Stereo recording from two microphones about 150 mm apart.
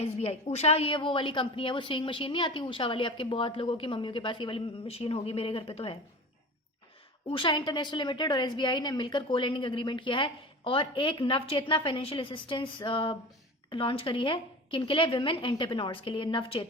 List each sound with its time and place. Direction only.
0.0 s a woman's voice: 45° left (ahead or behind)
7.3 s a woman's voice: 35° left (ahead or behind)